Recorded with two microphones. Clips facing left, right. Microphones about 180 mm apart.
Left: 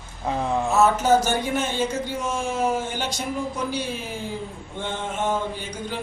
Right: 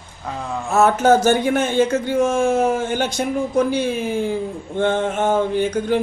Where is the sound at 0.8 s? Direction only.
50° right (ahead or behind).